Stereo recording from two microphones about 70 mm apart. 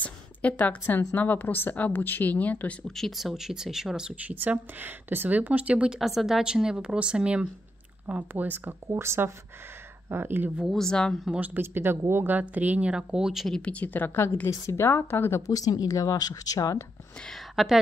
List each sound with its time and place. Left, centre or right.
0.0 s a woman's voice: left
3.0 s speech: centre
4.2 s speech: right
5.9 s speech: centre
8.3 s speech: right
8.9 s speech: right
10.7 s speech: centre
11.3 s speech: right; by 13.5 s centre
13.5 s a woman's voice: centre; by 15.4 s left
15.4 s speech: left
17.3 s speech: centre